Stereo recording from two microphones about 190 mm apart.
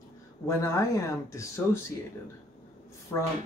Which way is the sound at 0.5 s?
15° left (ahead or behind).